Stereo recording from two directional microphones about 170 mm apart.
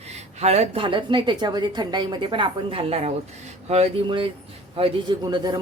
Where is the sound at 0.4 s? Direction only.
40° right (ahead or behind).